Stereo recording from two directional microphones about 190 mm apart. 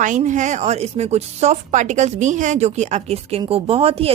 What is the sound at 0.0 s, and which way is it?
Speech, 40° right (ahead or behind).